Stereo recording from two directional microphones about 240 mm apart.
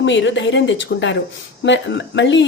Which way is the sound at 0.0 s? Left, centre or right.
Left.